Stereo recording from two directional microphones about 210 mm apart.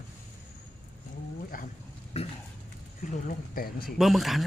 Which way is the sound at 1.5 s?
40° left (ahead or behind).